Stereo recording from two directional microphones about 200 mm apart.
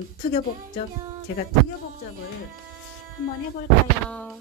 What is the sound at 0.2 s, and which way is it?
Speech, 40° left (ahead or behind).